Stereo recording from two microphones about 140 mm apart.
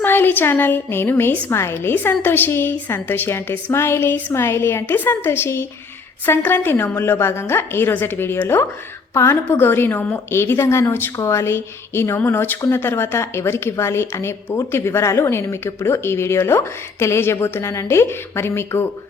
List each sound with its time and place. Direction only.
0.0 s a woman's voice: 15° left (ahead or behind)